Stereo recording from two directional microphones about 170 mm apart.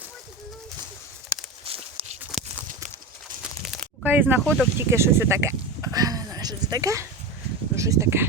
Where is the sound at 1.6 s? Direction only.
35° right (ahead or behind).